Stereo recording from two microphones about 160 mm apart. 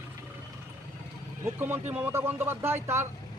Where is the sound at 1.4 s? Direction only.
15° right (ahead or behind).